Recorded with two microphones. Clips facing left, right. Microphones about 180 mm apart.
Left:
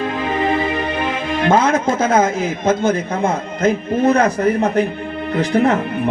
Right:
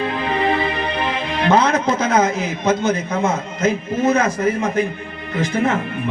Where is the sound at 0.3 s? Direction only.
45° left (ahead or behind).